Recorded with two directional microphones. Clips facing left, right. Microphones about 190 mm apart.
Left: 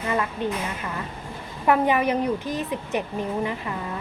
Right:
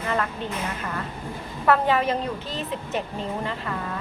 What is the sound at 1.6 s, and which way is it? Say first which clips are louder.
A woman's voice: left 1 dB; 15° left (ahead or behind).